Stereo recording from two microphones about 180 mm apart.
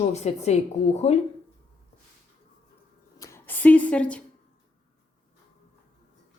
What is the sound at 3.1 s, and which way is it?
Rub, 15° left (ahead or behind).